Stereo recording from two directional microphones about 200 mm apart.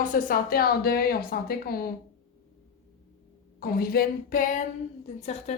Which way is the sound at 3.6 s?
50° left (ahead or behind).